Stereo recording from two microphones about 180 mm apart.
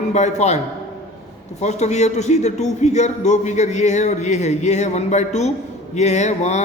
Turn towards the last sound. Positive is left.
turn(degrees=40)  # may be behind; listen again after turning